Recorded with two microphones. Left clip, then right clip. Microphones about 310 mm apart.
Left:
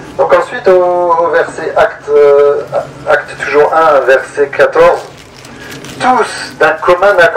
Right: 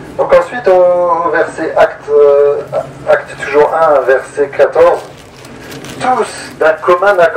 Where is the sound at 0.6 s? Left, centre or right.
Left.